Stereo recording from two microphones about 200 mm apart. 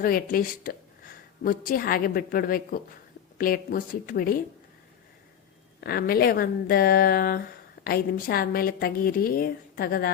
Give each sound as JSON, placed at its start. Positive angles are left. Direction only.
{"t": 0.0, "sound": "a woman's voice", "side_deg": 45}
{"t": 5.8, "sound": "a woman's voice", "side_deg": 50}